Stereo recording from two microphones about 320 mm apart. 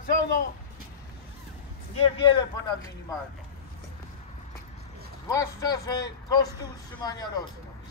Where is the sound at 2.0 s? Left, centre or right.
Centre.